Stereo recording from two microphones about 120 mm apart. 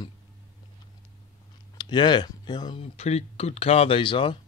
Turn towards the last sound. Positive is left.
turn(degrees=45)  # may be behind; listen again after turning